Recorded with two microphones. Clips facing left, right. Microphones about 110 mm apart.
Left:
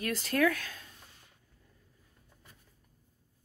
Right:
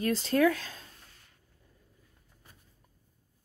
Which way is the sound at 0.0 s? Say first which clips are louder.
Right 4 dB; 30° right (ahead or behind).